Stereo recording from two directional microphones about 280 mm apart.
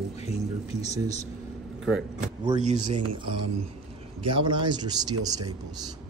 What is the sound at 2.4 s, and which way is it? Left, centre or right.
Speech, centre.